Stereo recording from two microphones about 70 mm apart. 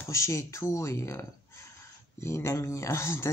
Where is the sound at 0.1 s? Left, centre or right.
Left.